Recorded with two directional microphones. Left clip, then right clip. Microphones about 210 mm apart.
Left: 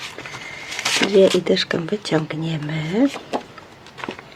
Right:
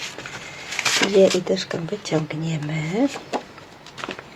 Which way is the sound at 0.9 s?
15° left (ahead or behind).